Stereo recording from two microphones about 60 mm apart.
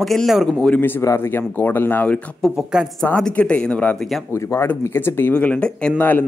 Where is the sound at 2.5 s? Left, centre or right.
Centre.